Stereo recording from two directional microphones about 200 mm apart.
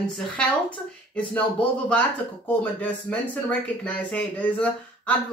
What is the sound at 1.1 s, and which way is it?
Speech, 5° left (ahead or behind).